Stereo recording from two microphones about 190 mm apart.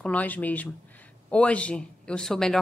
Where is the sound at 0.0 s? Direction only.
10° left (ahead or behind).